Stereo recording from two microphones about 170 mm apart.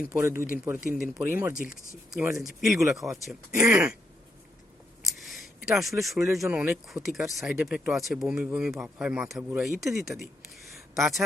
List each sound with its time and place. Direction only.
0.0 s speech: 10° right (ahead or behind)
0.3 s a man's voice: 55° left (ahead or behind)
1.2 s speech: 10° right (ahead or behind)
3.5 s speech: 15° right (ahead or behind)
5.3 s a sound: centre (ahead or behind)
6.3 s speech: 5° right (ahead or behind)